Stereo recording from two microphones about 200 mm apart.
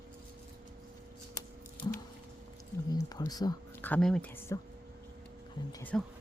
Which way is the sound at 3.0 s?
20° left (ahead or behind).